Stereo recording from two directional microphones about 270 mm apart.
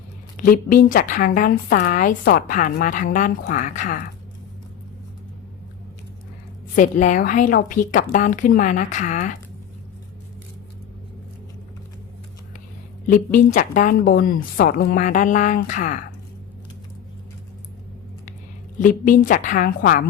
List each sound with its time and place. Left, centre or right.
0.3 s speech: left
6.7 s a woman's voice: left
13.1 s a woman's voice: left
18.8 s a woman's voice: left